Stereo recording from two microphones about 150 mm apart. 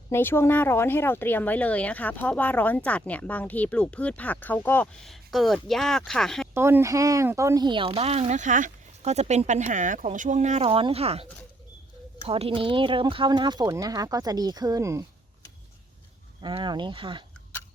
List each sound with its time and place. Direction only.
0.1 s speech: 15° left (ahead or behind)
5.0 s speech: centre (ahead or behind)
6.5 s speech: 15° right (ahead or behind)
16.4 s speech: 30° right (ahead or behind)